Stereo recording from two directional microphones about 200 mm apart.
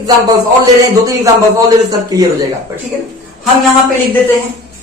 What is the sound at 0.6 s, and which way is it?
A man's voice, 15° right (ahead or behind).